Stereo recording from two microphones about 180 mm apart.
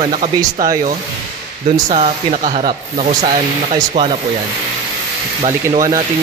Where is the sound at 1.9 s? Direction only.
35° right (ahead or behind).